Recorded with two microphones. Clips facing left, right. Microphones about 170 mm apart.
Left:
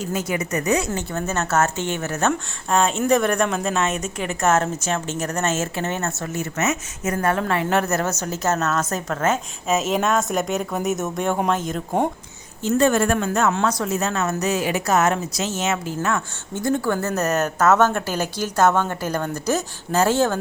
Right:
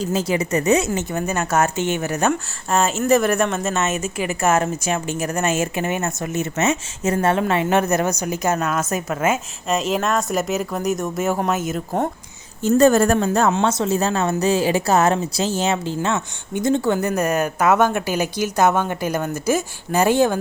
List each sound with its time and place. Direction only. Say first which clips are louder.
0.0 s speech: right 4 dB; 30° right (ahead or behind)
0.9 s a woman's voice: right 2 dB; 15° right (ahead or behind)
2.6 s a woman's voice: right 1 dB; 5° right (ahead or behind)
9.6 s speech: even; centre (ahead or behind)
12.6 s speech: right 4 dB; 40° right (ahead or behind)
13.5 s a woman's voice: right 3 dB; 25° right (ahead or behind)